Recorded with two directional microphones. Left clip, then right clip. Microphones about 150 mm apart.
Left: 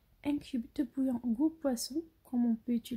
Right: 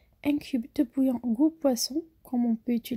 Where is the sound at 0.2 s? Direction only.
35° right (ahead or behind).